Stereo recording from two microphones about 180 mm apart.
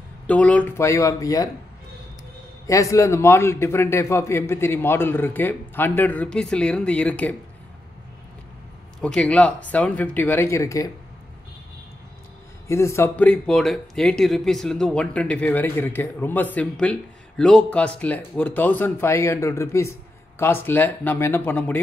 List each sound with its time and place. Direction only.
0.3 s speech: 10° left (ahead or behind)
2.6 s speech: 15° left (ahead or behind)
9.0 s speech: 5° left (ahead or behind)
12.6 s speech: 15° left (ahead or behind)